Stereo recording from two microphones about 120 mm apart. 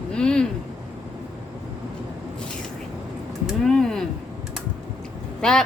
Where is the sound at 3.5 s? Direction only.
5° left (ahead or behind).